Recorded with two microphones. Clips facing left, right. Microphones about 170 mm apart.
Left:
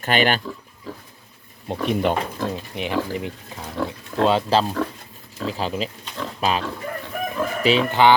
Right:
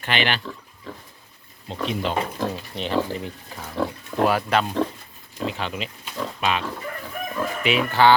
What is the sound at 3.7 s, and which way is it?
Pig, 15° right (ahead or behind).